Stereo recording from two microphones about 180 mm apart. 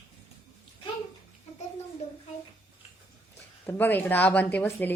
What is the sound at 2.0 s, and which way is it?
Child singing, 40° left (ahead or behind).